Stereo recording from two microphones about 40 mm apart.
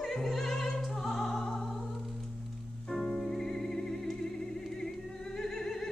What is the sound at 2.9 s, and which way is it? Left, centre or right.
Music, centre.